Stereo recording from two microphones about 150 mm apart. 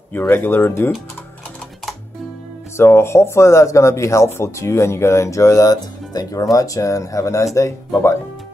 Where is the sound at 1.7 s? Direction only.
Centre (ahead or behind).